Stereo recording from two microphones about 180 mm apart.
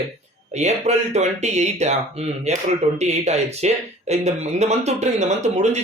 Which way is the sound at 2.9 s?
35° right (ahead or behind).